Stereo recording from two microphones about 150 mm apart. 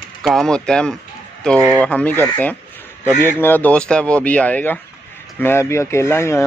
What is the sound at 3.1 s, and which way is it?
Speech, 15° right (ahead or behind).